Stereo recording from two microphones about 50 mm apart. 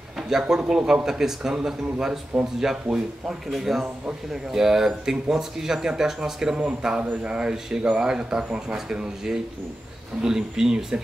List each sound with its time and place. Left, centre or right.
0.3 s speech: centre